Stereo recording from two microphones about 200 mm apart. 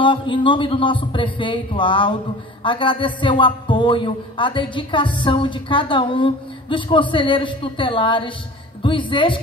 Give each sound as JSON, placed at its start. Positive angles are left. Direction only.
{"t": 0.0, "sound": "a man's voice", "side_deg": 25}